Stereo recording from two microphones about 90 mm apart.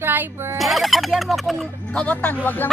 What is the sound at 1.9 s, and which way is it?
Speech, 15° left (ahead or behind).